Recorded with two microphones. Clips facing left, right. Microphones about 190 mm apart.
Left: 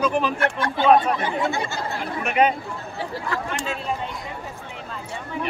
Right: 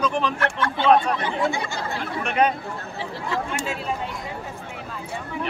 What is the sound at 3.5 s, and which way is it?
Speech, 5° right (ahead or behind).